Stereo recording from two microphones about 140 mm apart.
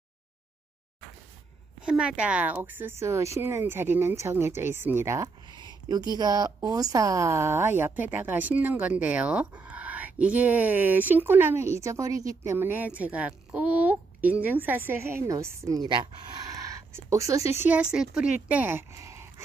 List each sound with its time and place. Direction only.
1.8 s speech: 5° right (ahead or behind)
5.5 s a woman's voice: 30° right (ahead or behind)
16.4 s a sound: 25° right (ahead or behind)
17.9 s speech: 5° right (ahead or behind)